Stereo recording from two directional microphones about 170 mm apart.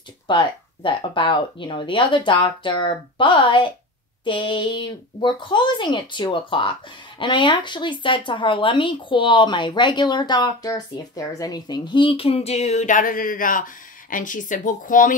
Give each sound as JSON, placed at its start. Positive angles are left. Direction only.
{"t": 0.3, "sound": "speech", "side_deg": 30}